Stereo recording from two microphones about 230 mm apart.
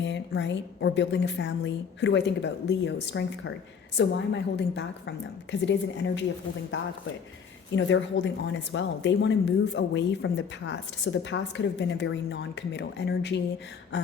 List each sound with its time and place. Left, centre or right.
0.0 s speech: left
7.8 s speech: left